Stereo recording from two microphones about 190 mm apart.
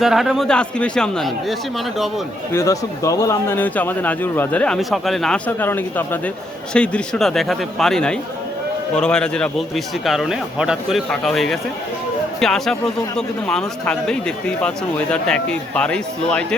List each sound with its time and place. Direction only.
0.0 s a man's voice: centre (ahead or behind)
2.5 s a man's voice: 15° left (ahead or behind)